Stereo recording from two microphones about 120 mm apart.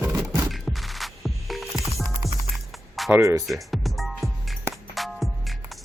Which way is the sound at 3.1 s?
20° right (ahead or behind).